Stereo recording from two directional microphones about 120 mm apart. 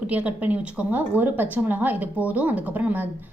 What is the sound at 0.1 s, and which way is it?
Speech, 10° right (ahead or behind).